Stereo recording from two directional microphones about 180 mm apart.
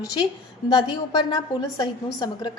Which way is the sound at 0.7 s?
25° left (ahead or behind).